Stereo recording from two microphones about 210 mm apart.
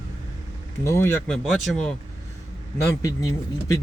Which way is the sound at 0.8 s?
10° left (ahead or behind).